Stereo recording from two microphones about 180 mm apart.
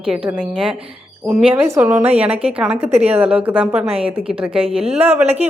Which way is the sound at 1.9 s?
35° right (ahead or behind).